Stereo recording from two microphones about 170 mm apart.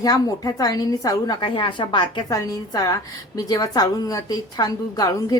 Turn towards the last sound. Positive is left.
turn(degrees=20)  # may be behind; listen again after turning